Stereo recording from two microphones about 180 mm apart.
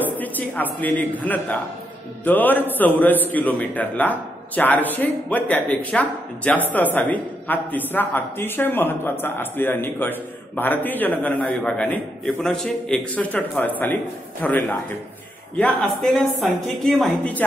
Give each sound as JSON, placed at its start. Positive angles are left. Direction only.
{"t": 0.0, "sound": "a man's voice", "side_deg": 10}